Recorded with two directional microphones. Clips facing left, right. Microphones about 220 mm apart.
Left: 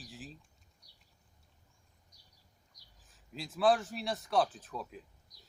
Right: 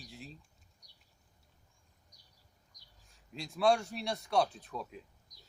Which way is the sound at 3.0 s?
Centre (ahead or behind).